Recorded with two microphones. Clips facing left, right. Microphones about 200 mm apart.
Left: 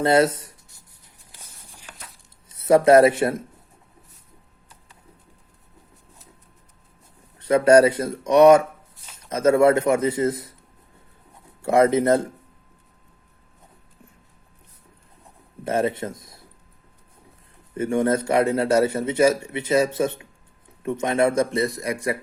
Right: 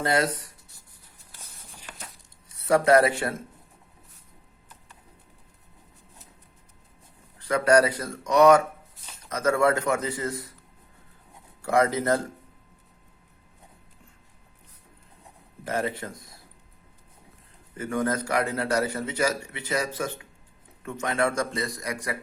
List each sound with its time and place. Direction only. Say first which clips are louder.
0.0 s a man's voice: left 7 dB; 25° left (ahead or behind)
2.6 s a man's voice: left 6 dB; 20° left (ahead or behind)
7.3 s a man's voice: left 6 dB; 25° left (ahead or behind)
11.6 s a man's voice: left 6 dB; 25° left (ahead or behind)
15.6 s speech: left 6 dB; 25° left (ahead or behind)
17.7 s a man's voice: left 6 dB; 25° left (ahead or behind)